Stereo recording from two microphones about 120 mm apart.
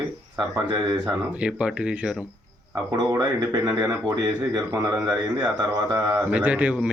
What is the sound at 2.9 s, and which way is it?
Speech, 35° right (ahead or behind).